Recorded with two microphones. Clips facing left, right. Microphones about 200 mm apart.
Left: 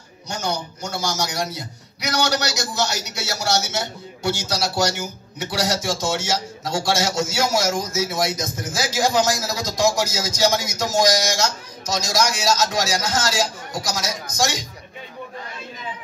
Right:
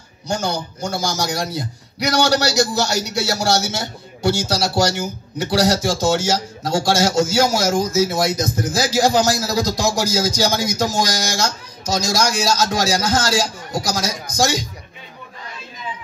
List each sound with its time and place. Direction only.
0.3 s a man's voice: 30° right (ahead or behind)